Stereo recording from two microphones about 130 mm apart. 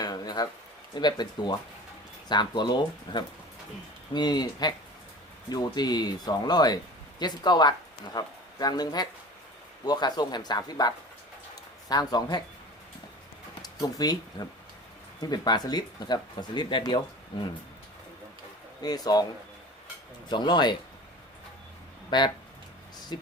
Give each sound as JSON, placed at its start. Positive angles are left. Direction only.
{"t": 0.0, "sound": "a sound", "side_deg": 30}
{"t": 0.9, "sound": "speech", "side_deg": 35}
{"t": 13.6, "sound": "speech", "side_deg": 30}
{"t": 18.8, "sound": "speech", "side_deg": 30}
{"t": 20.3, "sound": "speech", "side_deg": 35}
{"t": 23.1, "sound": "speech", "side_deg": 35}